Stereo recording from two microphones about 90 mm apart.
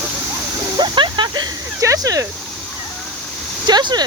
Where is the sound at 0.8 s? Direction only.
60° right (ahead or behind).